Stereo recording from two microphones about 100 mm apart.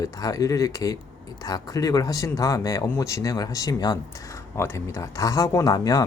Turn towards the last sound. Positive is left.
turn(degrees=40)  # may be behind; listen again after turning